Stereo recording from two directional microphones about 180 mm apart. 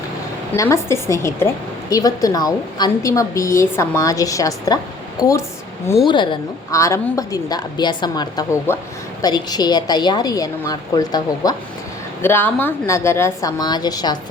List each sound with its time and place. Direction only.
0.5 s a woman's voice: 15° left (ahead or behind)
6.1 s a woman's voice: 25° left (ahead or behind)